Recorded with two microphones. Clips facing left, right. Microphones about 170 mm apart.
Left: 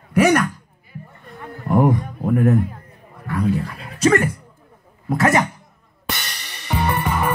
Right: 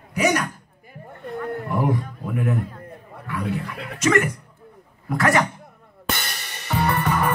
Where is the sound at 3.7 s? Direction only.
65° right (ahead or behind).